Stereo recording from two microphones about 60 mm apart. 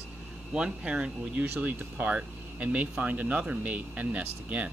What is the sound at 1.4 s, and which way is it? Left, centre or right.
Speech, right.